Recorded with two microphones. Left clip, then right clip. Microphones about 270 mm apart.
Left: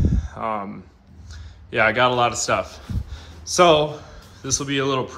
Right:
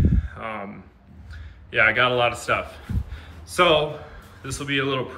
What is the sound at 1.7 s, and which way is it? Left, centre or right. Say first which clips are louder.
Speech: left 1 dB; centre.